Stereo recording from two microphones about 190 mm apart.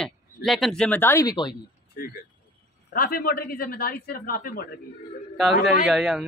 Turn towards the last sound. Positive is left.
turn(degrees=0)  # may be behind; listen again after turning